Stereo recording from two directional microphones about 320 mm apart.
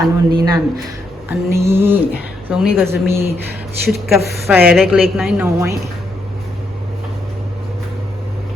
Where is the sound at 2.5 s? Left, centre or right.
Centre.